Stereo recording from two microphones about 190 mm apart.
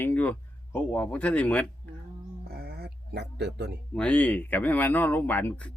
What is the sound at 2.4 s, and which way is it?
Music, 55° right (ahead or behind).